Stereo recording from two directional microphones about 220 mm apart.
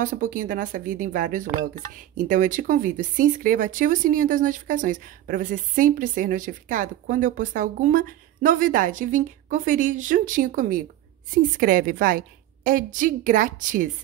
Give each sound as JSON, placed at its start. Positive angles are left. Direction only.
{"t": 0.0, "sound": "speech", "side_deg": -35}